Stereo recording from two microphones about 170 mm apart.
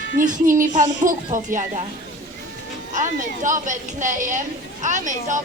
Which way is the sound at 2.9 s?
50° right (ahead or behind).